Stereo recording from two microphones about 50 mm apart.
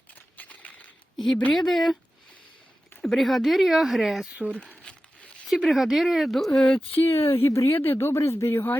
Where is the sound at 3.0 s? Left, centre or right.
Centre.